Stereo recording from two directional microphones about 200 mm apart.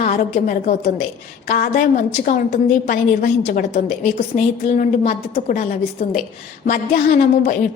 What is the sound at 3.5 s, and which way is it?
A woman's voice, 45° left (ahead or behind).